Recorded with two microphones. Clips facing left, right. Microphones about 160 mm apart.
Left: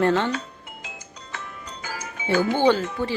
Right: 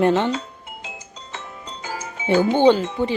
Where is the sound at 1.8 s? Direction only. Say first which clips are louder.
Right 4 dB; 25° right (ahead or behind).